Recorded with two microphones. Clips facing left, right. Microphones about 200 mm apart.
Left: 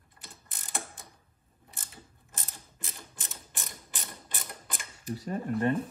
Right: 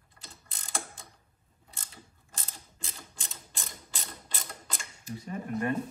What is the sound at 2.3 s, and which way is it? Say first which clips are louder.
Mechanisms: even; 20° left (ahead or behind).